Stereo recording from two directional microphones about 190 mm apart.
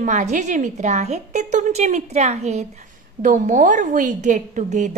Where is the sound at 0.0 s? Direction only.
40° right (ahead or behind).